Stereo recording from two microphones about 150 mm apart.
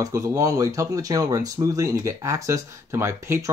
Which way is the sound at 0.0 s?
20° right (ahead or behind).